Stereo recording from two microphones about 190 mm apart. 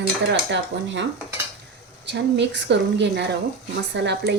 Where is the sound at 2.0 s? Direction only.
65° right (ahead or behind).